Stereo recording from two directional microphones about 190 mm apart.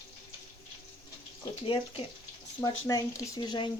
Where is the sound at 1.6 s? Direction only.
25° left (ahead or behind).